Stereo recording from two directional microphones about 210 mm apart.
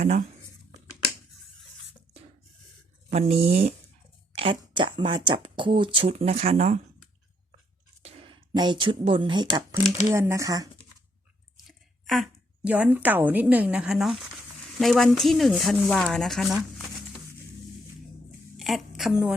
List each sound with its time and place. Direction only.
0.0 s speech: 30° right (ahead or behind)
3.1 s speech: 30° right (ahead or behind)
8.0 s a woman's voice: 25° right (ahead or behind)
12.0 s a woman's voice: centre (ahead or behind)
18.5 s a woman's voice: centre (ahead or behind)